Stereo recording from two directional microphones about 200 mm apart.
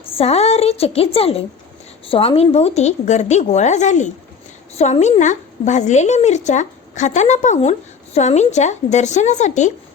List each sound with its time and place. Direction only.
0.2 s a woman's voice: 30° left (ahead or behind)